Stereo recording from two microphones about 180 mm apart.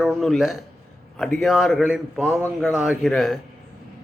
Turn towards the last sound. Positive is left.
turn(degrees=0)  # may be behind; listen again after turning